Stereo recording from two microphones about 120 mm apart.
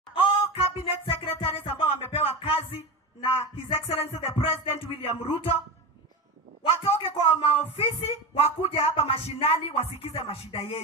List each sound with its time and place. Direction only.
0.1 s music: 50° left (ahead or behind)
6.8 s music: 50° left (ahead or behind)